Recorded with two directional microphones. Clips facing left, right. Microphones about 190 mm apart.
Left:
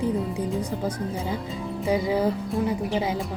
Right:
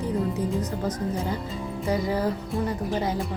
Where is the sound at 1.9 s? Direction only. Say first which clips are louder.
Left 2 dB; 10° left (ahead or behind).